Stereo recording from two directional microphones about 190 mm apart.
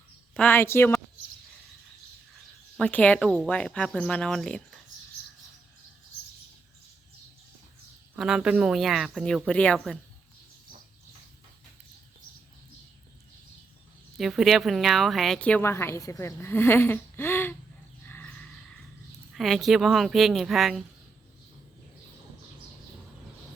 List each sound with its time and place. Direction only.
0.3 s a woman's voice: 10° left (ahead or behind)
2.7 s a woman's voice: 5° left (ahead or behind)
8.1 s speech: 5° right (ahead or behind)
14.2 s a woman's voice: centre (ahead or behind)
18.1 s sheep: 5° left (ahead or behind)
19.3 s speech: centre (ahead or behind)